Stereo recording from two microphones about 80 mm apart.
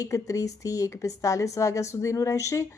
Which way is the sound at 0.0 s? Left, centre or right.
Left.